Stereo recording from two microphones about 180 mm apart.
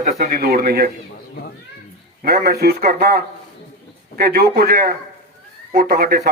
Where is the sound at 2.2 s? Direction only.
60° right (ahead or behind).